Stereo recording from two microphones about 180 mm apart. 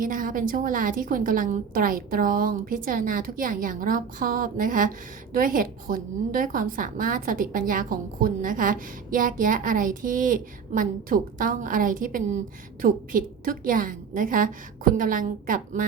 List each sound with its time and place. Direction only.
0.0 s a woman's voice: 50° right (ahead or behind)